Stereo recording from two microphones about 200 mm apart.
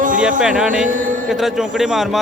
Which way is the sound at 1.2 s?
Centre (ahead or behind).